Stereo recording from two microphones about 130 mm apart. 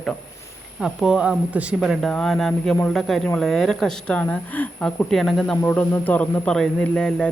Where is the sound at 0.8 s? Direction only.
5° right (ahead or behind); by 5.0 s 15° left (ahead or behind).